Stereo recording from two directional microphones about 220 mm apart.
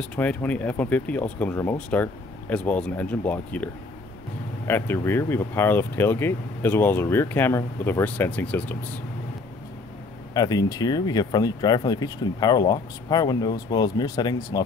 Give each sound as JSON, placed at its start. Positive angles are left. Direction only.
{"t": 0.0, "sound": "speech", "side_deg": 5}
{"t": 10.3, "sound": "speech", "side_deg": 15}